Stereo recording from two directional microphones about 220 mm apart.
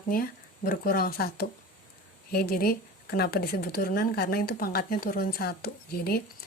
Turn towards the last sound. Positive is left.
turn(degrees=45)  # may be behind; listen again after turning